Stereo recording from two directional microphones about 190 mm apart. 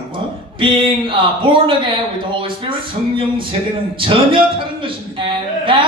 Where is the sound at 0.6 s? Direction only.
25° right (ahead or behind).